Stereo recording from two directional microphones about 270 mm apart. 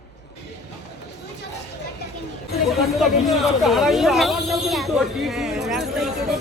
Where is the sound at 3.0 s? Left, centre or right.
Centre.